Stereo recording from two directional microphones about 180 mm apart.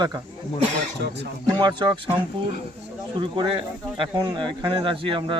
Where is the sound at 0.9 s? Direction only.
70° right (ahead or behind).